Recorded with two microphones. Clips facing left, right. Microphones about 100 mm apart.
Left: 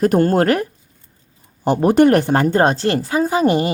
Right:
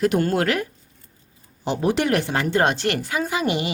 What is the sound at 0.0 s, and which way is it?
A woman's voice, 45° left (ahead or behind).